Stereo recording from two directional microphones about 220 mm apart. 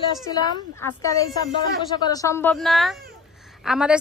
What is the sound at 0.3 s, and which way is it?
A woman's voice, 15° left (ahead or behind).